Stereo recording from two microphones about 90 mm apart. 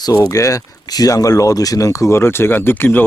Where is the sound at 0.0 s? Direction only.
40° left (ahead or behind).